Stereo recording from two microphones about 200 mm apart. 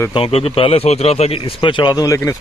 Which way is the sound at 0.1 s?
30° left (ahead or behind).